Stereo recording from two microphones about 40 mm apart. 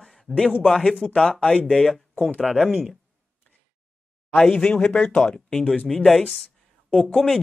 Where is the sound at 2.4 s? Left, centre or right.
Centre.